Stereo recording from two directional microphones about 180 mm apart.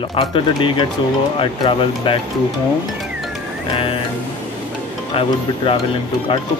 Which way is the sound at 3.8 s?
30° left (ahead or behind).